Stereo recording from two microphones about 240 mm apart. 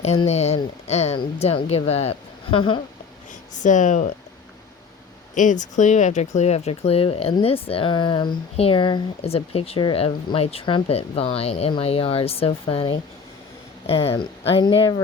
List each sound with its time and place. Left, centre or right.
0.0 s speech: left
3.5 s speech: left
5.3 s speech: left